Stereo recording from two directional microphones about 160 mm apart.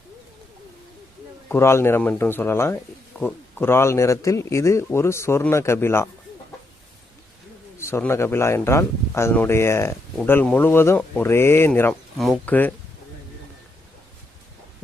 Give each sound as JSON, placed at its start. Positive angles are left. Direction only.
{"t": 1.5, "sound": "speech", "side_deg": 15}
{"t": 7.8, "sound": "speech", "side_deg": 15}
{"t": 12.1, "sound": "speech", "side_deg": 0}